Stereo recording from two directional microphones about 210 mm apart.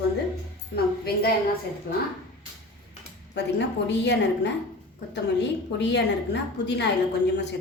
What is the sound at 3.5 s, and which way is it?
A woman's voice, 55° left (ahead or behind).